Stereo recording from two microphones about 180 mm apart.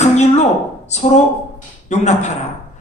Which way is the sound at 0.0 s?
40° left (ahead or behind).